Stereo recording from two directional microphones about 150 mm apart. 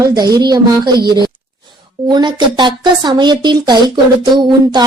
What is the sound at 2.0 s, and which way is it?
Speech, 30° right (ahead or behind).